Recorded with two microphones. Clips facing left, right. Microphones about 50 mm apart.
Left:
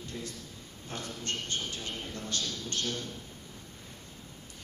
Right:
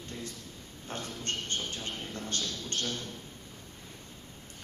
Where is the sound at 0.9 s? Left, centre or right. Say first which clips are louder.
Right 1 dB; right.